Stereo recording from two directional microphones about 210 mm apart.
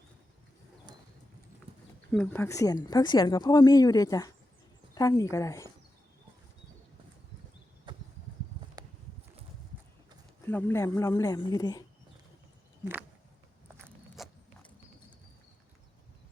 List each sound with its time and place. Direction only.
1.7 s horse: 25° right (ahead or behind)
2.1 s speech: 10° left (ahead or behind)
7.9 s a sound: 20° right (ahead or behind)
10.4 s speech: 10° left (ahead or behind)
13.7 s zipper: 10° right (ahead or behind)